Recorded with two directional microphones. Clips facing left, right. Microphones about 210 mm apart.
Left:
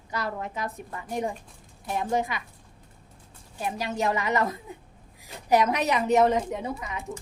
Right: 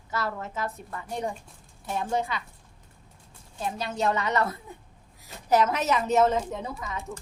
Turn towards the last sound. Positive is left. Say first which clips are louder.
# left 2 dB
turn(degrees=15)  # may be behind; listen again after turning